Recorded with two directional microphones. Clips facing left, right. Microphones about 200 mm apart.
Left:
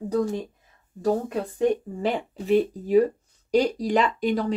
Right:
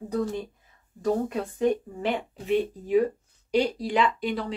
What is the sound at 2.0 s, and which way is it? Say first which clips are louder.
Speech: left 2 dB; 40° left (ahead or behind).